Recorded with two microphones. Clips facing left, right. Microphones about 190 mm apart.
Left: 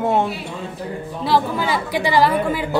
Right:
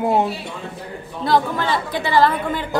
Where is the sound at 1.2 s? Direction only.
5° left (ahead or behind).